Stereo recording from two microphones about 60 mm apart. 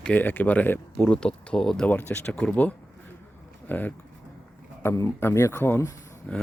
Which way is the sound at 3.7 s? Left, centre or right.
Left.